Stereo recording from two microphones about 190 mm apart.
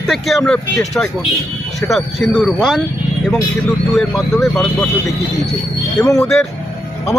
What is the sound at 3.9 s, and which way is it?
Speech, centre (ahead or behind).